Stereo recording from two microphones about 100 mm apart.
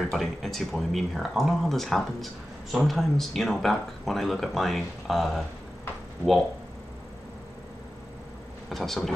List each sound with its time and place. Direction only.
0.0 s speech: centre (ahead or behind)
8.6 s speech: centre (ahead or behind)